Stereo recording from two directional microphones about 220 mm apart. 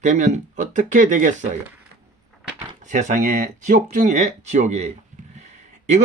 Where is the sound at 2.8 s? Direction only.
35° right (ahead or behind).